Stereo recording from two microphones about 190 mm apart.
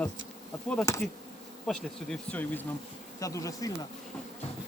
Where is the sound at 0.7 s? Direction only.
10° left (ahead or behind).